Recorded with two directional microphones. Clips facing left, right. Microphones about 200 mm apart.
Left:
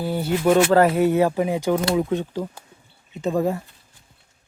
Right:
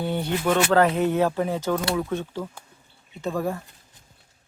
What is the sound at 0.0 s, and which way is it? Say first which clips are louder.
Speech: left 4 dB; 5° left (ahead or behind).